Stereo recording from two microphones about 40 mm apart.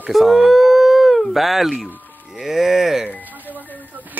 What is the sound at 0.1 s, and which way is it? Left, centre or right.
Speech, centre.